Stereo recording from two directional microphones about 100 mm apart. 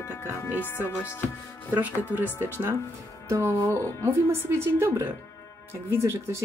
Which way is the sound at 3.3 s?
30° right (ahead or behind).